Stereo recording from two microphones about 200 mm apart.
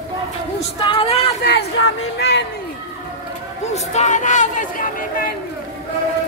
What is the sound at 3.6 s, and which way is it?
Speech, 35° left (ahead or behind).